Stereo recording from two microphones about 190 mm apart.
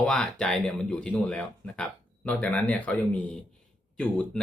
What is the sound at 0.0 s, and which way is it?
Speech, 5° left (ahead or behind).